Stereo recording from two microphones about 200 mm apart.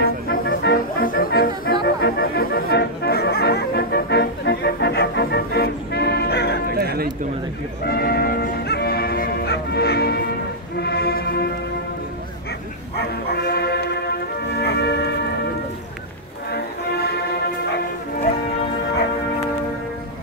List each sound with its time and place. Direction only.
0.3 s music: 50° left (ahead or behind)
6.7 s a sound: 50° right (ahead or behind)
7.8 s music: 50° left (ahead or behind)
13.3 s music: 55° left (ahead or behind)
16.5 s music: 50° left (ahead or behind)